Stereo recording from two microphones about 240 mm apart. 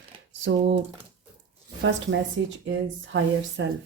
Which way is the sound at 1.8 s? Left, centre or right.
Right.